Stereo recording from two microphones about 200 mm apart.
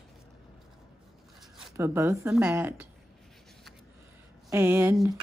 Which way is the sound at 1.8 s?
15° right (ahead or behind).